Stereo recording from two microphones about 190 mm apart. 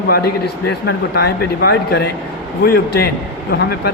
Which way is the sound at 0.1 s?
60° left (ahead or behind).